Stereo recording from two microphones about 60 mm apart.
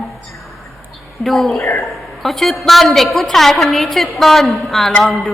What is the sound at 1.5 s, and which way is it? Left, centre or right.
Speech, left.